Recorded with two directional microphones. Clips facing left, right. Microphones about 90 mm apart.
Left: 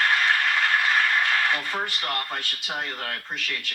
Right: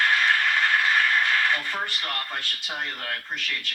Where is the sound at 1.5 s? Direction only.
20° left (ahead or behind).